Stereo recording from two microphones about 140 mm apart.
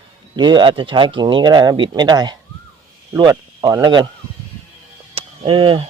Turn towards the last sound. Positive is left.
turn(degrees=-40)  # may be behind; listen again after turning